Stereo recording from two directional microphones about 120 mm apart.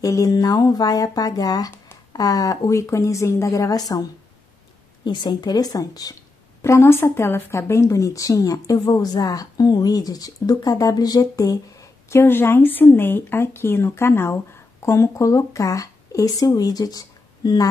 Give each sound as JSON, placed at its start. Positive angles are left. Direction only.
{"t": 0.0, "sound": "speech", "side_deg": 30}
{"t": 6.6, "sound": "speech", "side_deg": 20}